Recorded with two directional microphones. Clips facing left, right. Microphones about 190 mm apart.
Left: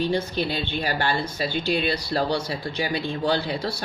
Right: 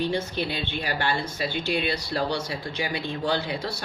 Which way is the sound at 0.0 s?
35° left (ahead or behind).